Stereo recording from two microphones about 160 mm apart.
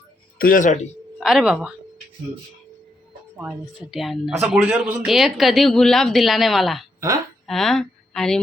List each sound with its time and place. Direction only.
0.3 s speech: 60° left (ahead or behind)
1.2 s speech: 5° right (ahead or behind)
3.8 s speech: centre (ahead or behind)